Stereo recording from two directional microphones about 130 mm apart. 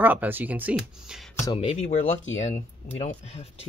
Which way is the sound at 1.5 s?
45° left (ahead or behind).